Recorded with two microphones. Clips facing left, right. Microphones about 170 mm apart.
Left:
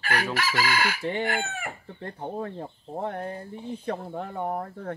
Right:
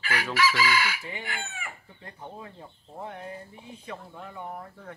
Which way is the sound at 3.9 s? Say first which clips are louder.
Left 8 dB; 50° left (ahead or behind).